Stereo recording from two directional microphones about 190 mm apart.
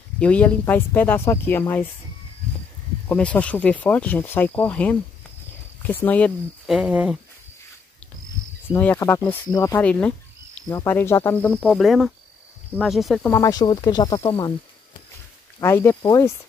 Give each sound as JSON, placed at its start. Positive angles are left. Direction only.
{"t": 0.2, "sound": "speech", "side_deg": 5}
{"t": 3.1, "sound": "speech", "side_deg": 5}
{"t": 8.7, "sound": "speech", "side_deg": 10}
{"t": 12.7, "sound": "insect", "side_deg": 0}
{"t": 13.3, "sound": "speech", "side_deg": 20}
{"t": 15.6, "sound": "speech", "side_deg": 10}